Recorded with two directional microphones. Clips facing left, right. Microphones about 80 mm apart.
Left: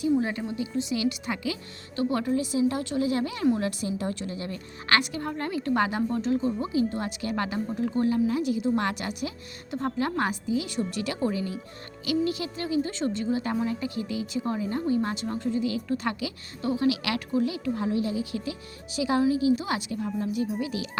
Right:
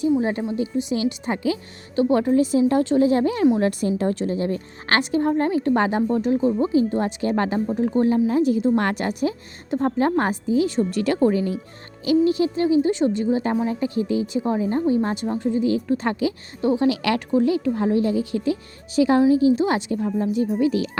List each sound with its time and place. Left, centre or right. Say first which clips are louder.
0.0 s a woman's voice: right 5 dB; right
2.3 s a woman's voice: right 8 dB; right
3.6 s a woman's voice: right 8 dB; right
6.1 s a woman's voice: right 6 dB; right
7.7 s a woman's voice: right 5 dB; right
12.0 s a woman's voice: right 9 dB; right
13.3 s a woman's voice: right 6 dB; right
16.9 s a woman's voice: right 7 dB; right